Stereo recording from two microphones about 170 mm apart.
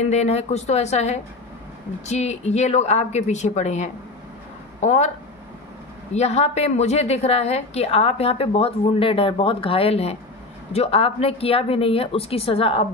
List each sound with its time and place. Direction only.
0.1 s a woman's voice: 40° left (ahead or behind)
6.1 s a woman's voice: 40° left (ahead or behind)